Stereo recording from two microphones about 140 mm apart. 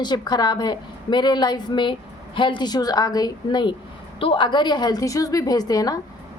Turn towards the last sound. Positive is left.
turn(degrees=25)  # may be behind; listen again after turning